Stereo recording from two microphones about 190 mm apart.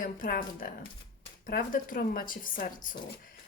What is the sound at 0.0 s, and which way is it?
Speech, 45° left (ahead or behind).